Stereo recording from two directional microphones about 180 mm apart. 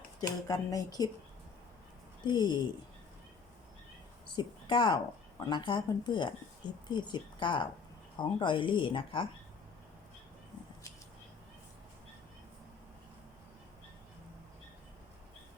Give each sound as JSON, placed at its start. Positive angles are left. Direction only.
{"t": 0.2, "sound": "speech", "side_deg": 20}
{"t": 2.2, "sound": "speech", "side_deg": 25}
{"t": 4.4, "sound": "a woman's voice", "side_deg": 25}